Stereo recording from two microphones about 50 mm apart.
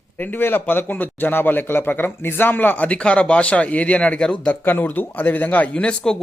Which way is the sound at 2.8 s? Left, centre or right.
Left.